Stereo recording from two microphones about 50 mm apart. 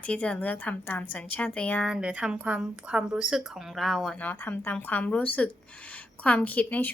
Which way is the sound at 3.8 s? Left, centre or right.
Centre.